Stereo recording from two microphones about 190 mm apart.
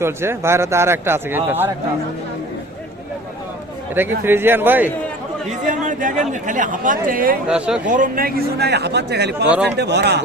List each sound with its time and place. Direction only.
0.0 s a man's voice: 15° right (ahead or behind)
4.2 s a man's voice: 10° right (ahead or behind)
5.5 s a man's voice: 40° right (ahead or behind)
7.4 s speech: 5° right (ahead or behind)
7.9 s a man's voice: 45° right (ahead or behind); by 10.2 s 60° right (ahead or behind)